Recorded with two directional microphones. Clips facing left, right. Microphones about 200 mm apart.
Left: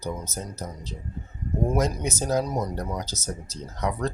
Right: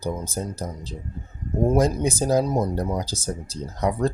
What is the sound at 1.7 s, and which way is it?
Speech, 30° right (ahead or behind).